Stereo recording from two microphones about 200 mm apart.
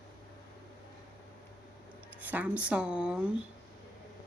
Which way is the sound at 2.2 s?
10° right (ahead or behind).